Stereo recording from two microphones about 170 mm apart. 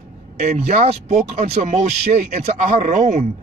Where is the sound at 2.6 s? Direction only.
50° right (ahead or behind).